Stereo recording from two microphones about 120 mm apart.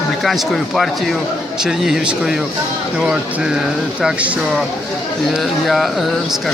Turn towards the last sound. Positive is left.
turn(degrees=0)  # may be behind; listen again after turning